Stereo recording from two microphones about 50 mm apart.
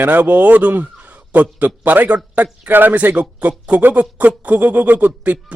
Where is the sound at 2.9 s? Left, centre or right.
Right.